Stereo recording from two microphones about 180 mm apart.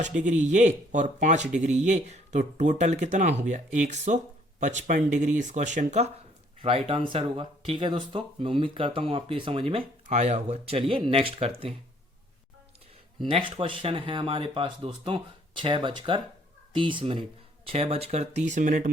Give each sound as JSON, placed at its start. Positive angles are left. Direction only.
{"t": 0.2, "sound": "speech", "side_deg": -40}
{"t": 13.2, "sound": "speech", "side_deg": -30}